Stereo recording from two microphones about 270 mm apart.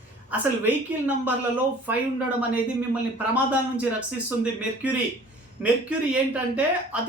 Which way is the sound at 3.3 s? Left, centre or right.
Centre.